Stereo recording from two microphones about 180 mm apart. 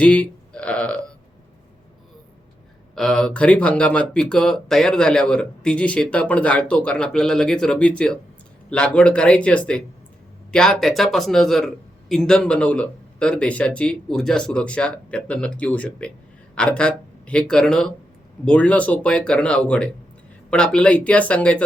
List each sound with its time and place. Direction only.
0.0 s speech: 5° left (ahead or behind)
2.9 s speech: centre (ahead or behind)